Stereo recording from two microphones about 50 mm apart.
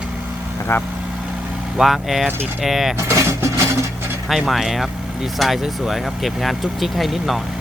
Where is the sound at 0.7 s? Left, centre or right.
Left.